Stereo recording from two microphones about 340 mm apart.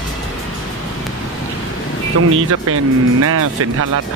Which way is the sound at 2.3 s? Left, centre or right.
Right.